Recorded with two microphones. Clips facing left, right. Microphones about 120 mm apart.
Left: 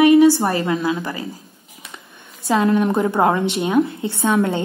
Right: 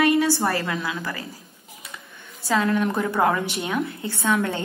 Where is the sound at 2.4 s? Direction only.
20° left (ahead or behind).